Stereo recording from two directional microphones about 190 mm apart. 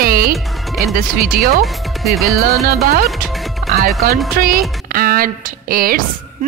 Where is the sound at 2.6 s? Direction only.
55° right (ahead or behind).